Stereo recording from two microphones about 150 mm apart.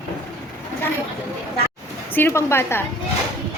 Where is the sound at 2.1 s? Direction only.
15° left (ahead or behind).